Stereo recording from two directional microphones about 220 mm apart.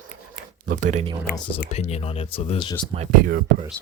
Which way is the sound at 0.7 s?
35° right (ahead or behind).